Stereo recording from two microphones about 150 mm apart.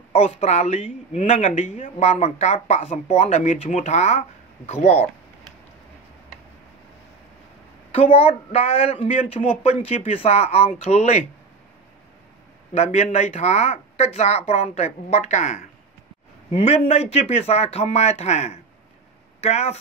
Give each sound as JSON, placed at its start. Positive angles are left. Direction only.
{"t": 0.1, "sound": "speech", "side_deg": 40}
{"t": 7.9, "sound": "speech", "side_deg": 40}
{"t": 12.7, "sound": "speech", "side_deg": 45}